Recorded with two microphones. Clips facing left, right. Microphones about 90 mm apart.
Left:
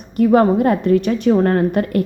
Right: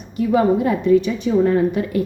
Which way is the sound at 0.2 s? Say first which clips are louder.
Left 4 dB; 55° left (ahead or behind).